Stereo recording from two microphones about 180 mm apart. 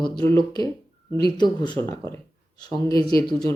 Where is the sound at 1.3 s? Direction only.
25° left (ahead or behind).